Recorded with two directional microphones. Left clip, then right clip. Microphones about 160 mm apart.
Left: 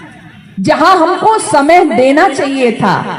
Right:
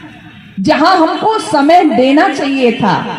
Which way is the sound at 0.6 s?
45° left (ahead or behind).